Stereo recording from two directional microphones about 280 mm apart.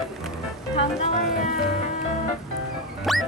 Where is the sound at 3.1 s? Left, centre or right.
Centre.